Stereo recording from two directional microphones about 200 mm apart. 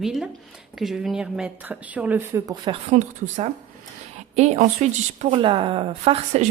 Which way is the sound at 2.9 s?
35° right (ahead or behind).